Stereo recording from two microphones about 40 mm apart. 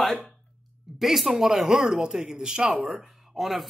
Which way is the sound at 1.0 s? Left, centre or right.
Centre.